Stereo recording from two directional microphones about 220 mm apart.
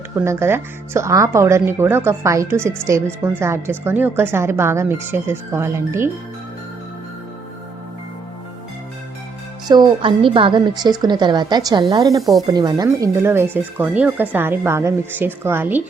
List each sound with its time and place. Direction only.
0.3 s speech: 10° right (ahead or behind)
9.6 s a woman's voice: 20° right (ahead or behind)
12.2 s speech: centre (ahead or behind)
12.5 s speech: 15° right (ahead or behind)